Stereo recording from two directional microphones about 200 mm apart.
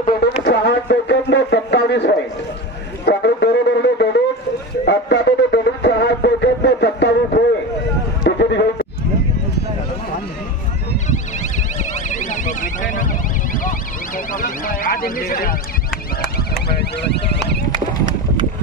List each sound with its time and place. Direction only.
0.5 s speech: 55° left (ahead or behind)
3.1 s a sound: 60° left (ahead or behind)
11.1 s car alarm: 35° left (ahead or behind)
16.6 s car alarm: 55° left (ahead or behind)
17.6 s clip-clop: 20° right (ahead or behind)